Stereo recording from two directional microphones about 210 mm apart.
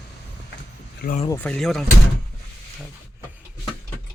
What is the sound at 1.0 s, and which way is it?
Speech, 40° left (ahead or behind).